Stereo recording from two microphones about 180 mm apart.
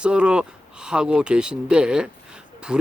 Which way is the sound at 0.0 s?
5° right (ahead or behind).